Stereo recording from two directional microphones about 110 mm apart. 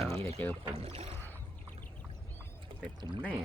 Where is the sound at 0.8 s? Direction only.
65° right (ahead or behind).